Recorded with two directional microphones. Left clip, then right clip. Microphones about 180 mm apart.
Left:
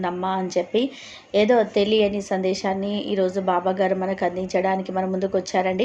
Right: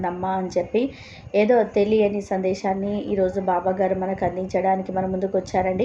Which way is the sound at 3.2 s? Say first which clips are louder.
Even; 40° left (ahead or behind).